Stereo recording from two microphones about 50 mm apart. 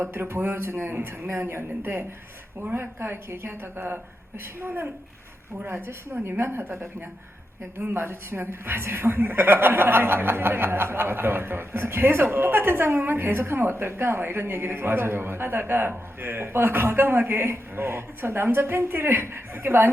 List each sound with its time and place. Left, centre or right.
0.0 s a woman's voice: right
7.8 s a woman's voice: right